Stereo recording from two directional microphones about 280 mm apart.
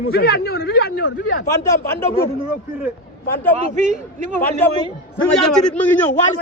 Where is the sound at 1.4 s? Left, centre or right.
Centre.